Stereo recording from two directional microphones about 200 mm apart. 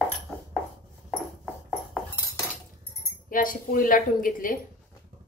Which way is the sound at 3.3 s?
45° left (ahead or behind).